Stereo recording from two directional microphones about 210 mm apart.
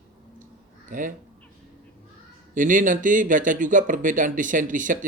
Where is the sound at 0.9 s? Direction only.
40° right (ahead or behind).